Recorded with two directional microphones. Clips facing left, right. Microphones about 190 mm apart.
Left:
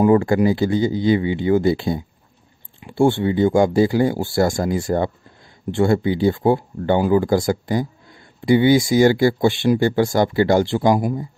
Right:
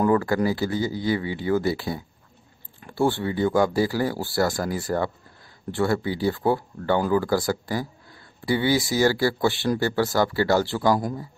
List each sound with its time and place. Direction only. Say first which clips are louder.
0.0 s speech: left 6 dB; 20° left (ahead or behind)